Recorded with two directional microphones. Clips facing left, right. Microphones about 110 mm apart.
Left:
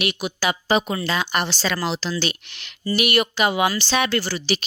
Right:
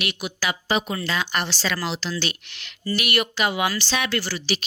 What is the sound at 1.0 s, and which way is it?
A woman's voice, 20° left (ahead or behind).